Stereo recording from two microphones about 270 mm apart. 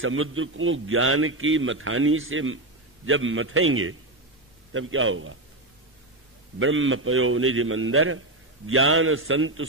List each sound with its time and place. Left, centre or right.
0.0 s a man's voice: right
6.6 s a man's voice: right